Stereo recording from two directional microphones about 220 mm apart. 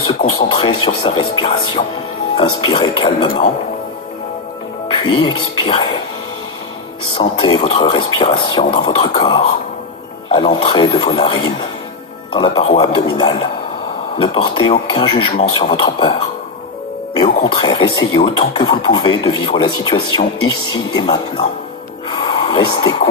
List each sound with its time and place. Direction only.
0.0 s speech: 25° left (ahead or behind)
4.9 s speech: 20° left (ahead or behind)
7.2 s speech: 20° left (ahead or behind)
22.1 s a sound: 20° left (ahead or behind)